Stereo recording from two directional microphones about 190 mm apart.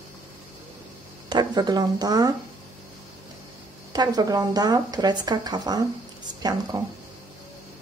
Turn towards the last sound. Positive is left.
turn(degrees=-20)  # may be behind; listen again after turning